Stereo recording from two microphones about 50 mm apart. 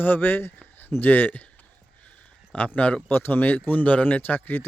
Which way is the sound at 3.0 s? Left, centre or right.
Left.